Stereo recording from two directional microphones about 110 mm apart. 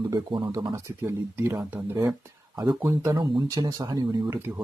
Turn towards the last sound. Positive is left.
turn(degrees=-25)  # may be behind; listen again after turning